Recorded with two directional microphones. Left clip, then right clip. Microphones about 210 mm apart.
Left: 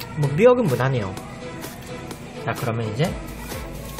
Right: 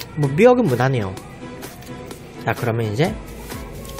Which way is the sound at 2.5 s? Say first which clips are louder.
Right 5 dB; 30° right (ahead or behind).